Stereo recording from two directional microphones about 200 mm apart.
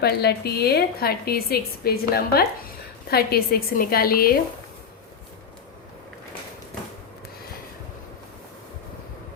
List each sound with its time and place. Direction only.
0.0 s a woman's voice: 55° left (ahead or behind)